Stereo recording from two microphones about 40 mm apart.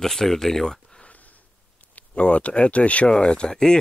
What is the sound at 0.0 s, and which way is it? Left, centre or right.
Speech, centre.